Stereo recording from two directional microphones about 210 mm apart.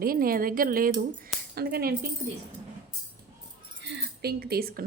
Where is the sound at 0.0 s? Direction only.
45° right (ahead or behind).